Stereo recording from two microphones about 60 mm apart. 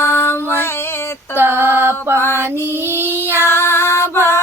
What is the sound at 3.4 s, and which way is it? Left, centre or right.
Music, left.